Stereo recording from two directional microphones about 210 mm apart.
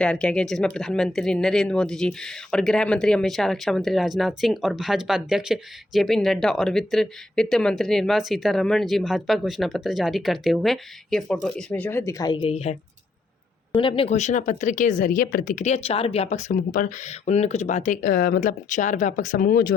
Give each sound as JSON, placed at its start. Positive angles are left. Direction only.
{"t": 0.0, "sound": "speech", "side_deg": 5}
{"t": 13.7, "sound": "speech", "side_deg": 25}